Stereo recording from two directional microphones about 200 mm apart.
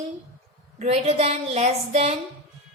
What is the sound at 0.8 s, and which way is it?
A woman's voice, 30° right (ahead or behind).